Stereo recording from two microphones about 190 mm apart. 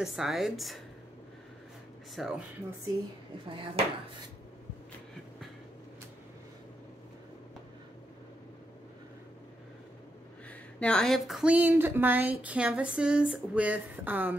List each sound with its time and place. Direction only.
0.0 s a woman's voice: centre (ahead or behind)
2.1 s a woman's voice: centre (ahead or behind)
3.4 s speech: 30° right (ahead or behind)
10.8 s speech: 5° left (ahead or behind)